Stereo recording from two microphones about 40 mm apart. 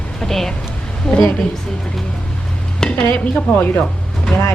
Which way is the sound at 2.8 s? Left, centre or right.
Centre.